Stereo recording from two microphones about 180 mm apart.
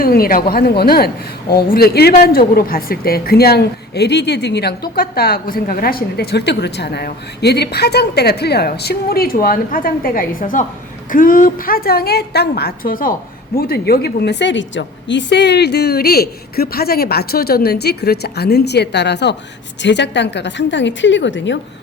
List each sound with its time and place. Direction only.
0.0 s a woman's voice: 55° left (ahead or behind); by 21.6 s 90° left